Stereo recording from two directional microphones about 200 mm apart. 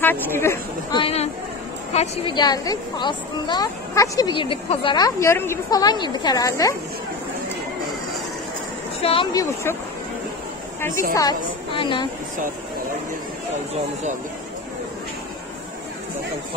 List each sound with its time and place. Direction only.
0.0 s speech: 10° left (ahead or behind)
0.9 s a woman's voice: 30° left (ahead or behind)
2.3 s a woman's voice: 20° left (ahead or behind)
9.0 s a woman's voice: 25° left (ahead or behind)
10.9 s a woman's voice: 40° right (ahead or behind)
11.1 s a woman's voice: 20° left (ahead or behind)